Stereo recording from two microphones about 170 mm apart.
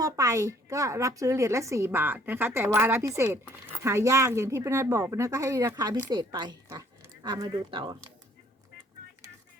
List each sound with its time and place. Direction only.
0.0 s a woman's voice: 20° right (ahead or behind)